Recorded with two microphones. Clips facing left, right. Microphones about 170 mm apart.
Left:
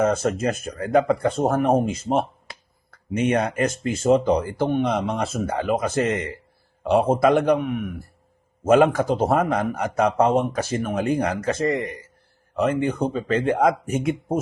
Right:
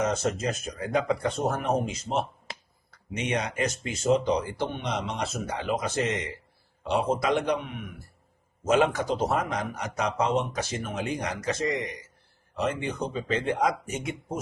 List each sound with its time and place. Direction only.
0.0 s a man's voice: 55° left (ahead or behind)